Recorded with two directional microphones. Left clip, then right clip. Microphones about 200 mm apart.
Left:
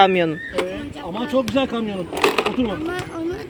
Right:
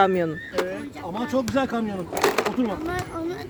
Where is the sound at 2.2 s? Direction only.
15° right (ahead or behind).